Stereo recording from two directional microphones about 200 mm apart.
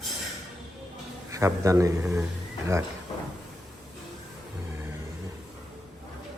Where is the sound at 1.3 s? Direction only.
15° right (ahead or behind).